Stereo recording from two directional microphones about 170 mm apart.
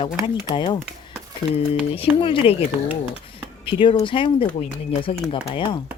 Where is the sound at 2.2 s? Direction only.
30° left (ahead or behind).